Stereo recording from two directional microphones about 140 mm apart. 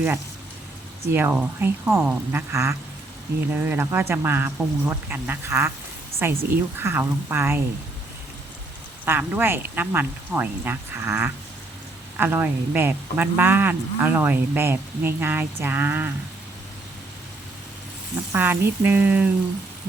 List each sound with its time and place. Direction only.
1.1 s a man's voice: 15° right (ahead or behind)
9.0 s a man's voice: 15° right (ahead or behind)
18.3 s a man's voice: 15° right (ahead or behind)